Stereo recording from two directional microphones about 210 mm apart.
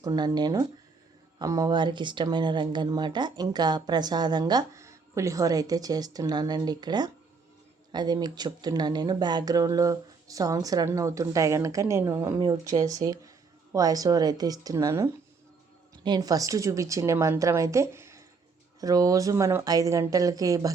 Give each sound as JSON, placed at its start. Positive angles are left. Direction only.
{"t": 0.0, "sound": "speech", "side_deg": -20}